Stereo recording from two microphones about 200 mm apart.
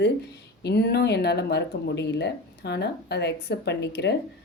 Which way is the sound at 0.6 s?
55° left (ahead or behind).